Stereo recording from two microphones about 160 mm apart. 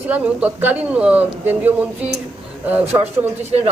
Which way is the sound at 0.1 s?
10° right (ahead or behind).